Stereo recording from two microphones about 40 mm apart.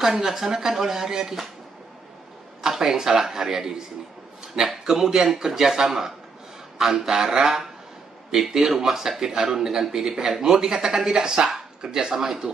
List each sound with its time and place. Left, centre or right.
0.0 s speech: centre
2.8 s speech: centre